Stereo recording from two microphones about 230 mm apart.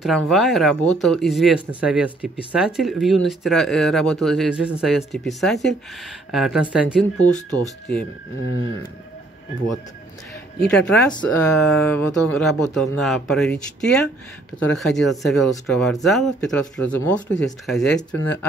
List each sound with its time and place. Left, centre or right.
0.0 s speech: centre
7.2 s speech: centre
10.7 s speech: centre